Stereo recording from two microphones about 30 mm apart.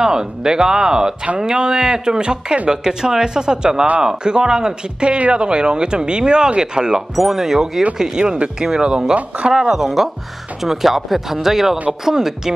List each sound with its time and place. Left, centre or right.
0.0 s speech: right
7.2 s speech: centre
8.2 s speech: right
8.5 s speech: right